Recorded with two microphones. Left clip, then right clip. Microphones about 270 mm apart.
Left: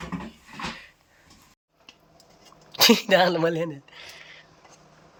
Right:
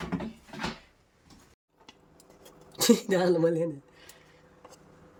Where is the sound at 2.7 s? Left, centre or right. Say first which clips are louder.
Left 7 dB; centre.